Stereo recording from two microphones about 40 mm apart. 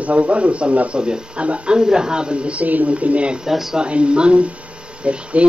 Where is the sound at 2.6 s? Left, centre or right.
Right.